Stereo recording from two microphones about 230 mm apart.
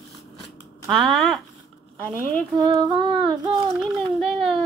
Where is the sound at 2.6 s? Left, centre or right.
Right.